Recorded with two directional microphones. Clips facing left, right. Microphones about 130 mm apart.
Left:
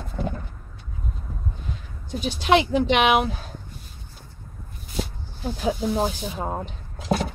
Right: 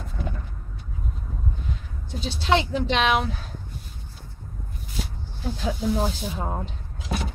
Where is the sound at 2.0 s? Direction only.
15° left (ahead or behind).